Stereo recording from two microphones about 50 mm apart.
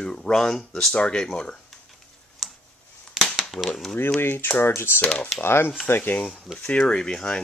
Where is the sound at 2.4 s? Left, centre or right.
Centre.